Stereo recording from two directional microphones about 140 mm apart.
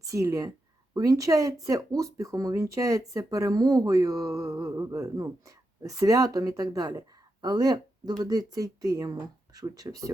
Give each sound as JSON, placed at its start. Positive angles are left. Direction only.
{"t": 0.0, "sound": "speech", "side_deg": -20}